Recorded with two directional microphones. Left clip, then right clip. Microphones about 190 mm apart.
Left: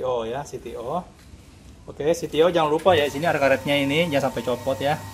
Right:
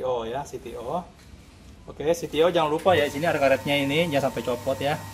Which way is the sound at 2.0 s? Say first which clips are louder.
Left 2 dB; 10° left (ahead or behind).